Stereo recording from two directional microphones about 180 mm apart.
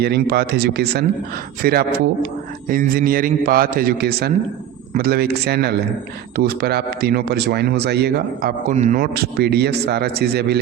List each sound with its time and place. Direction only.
0.0 s a man's voice: 65° right (ahead or behind)
8.7 s speech: 45° right (ahead or behind); by 10.6 s 60° right (ahead or behind)